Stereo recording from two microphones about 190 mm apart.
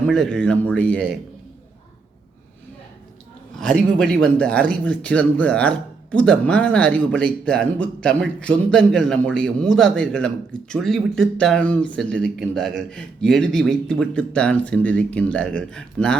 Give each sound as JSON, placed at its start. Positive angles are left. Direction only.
{"t": 0.1, "sound": "speech", "side_deg": 5}
{"t": 3.6, "sound": "speech", "side_deg": 5}